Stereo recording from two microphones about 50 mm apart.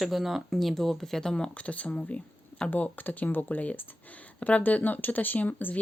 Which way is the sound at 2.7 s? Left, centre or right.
Left.